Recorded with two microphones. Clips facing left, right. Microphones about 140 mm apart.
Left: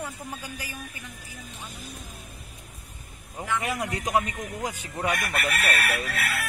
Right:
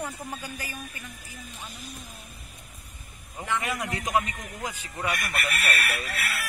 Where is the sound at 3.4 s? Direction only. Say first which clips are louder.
Left 1 dB; centre (ahead or behind).